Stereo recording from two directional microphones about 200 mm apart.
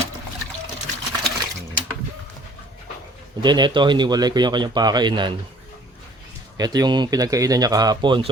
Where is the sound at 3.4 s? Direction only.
20° right (ahead or behind).